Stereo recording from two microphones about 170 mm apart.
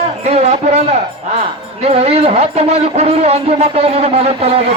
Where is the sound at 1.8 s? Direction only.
35° right (ahead or behind).